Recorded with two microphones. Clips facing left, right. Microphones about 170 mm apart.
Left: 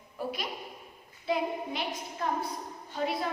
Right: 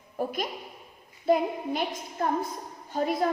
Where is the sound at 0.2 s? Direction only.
45° right (ahead or behind).